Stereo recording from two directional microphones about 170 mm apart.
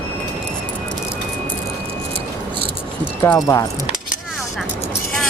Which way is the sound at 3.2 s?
15° left (ahead or behind).